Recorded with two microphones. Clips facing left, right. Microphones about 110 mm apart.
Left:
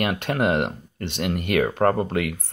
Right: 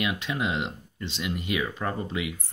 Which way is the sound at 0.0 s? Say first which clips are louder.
Left 6 dB; 55° left (ahead or behind).